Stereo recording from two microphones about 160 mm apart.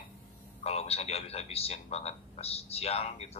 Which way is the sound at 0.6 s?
40° left (ahead or behind).